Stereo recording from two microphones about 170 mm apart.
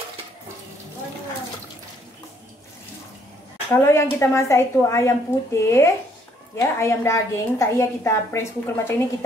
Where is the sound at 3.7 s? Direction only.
15° left (ahead or behind).